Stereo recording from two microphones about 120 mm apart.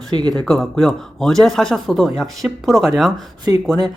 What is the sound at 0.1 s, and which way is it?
Speech, 35° right (ahead or behind).